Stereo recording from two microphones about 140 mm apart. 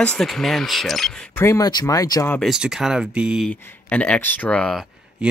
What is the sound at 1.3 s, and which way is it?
Speech, 20° left (ahead or behind).